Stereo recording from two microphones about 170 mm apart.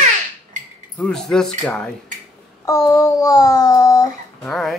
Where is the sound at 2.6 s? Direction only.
20° left (ahead or behind).